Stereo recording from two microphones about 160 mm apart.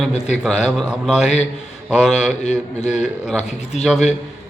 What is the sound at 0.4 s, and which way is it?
A man's voice, centre (ahead or behind).